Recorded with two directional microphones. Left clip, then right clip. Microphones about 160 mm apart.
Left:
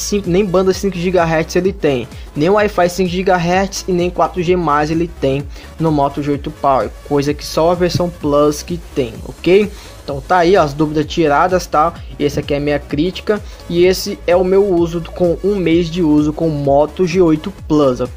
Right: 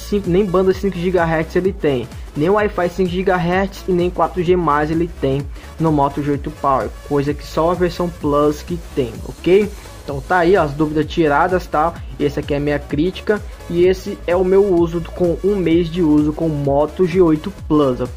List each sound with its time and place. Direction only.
0.1 s speech: 15° left (ahead or behind)